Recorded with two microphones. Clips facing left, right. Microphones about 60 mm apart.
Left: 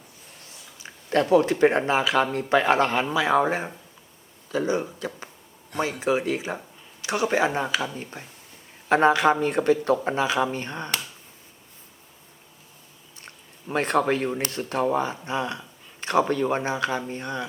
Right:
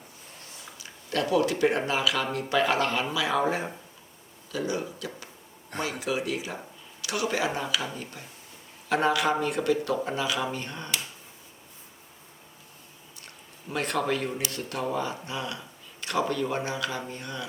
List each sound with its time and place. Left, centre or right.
0.8 s speech: left
13.2 s a sound: left
14.1 s speech: left